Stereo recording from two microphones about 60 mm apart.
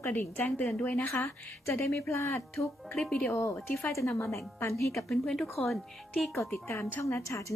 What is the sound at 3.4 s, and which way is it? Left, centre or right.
A woman's voice, left.